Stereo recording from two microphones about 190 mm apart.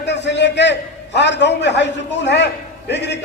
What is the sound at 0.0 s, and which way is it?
A man's voice, 65° left (ahead or behind).